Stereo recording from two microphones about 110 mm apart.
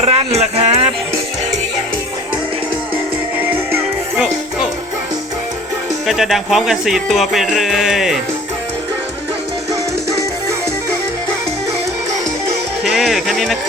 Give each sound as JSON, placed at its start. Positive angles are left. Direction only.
{"t": 0.0, "sound": "music", "side_deg": -70}
{"t": 3.4, "sound": "music", "side_deg": -15}
{"t": 6.1, "sound": "speech", "side_deg": 0}
{"t": 12.8, "sound": "speech", "side_deg": -5}